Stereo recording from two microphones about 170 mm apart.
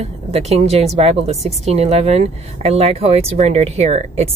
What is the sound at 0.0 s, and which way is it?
Speech, 40° right (ahead or behind).